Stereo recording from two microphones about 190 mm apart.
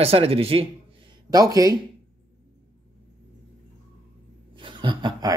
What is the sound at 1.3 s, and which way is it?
Speech, 20° right (ahead or behind).